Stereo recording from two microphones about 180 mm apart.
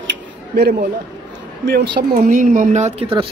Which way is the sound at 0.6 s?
55° right (ahead or behind).